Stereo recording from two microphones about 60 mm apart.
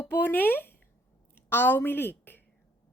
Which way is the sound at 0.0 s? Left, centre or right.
Left.